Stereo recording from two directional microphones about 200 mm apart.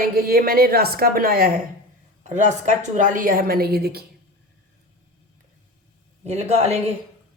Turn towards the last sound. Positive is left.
turn(degrees=-30)  # may be behind; listen again after turning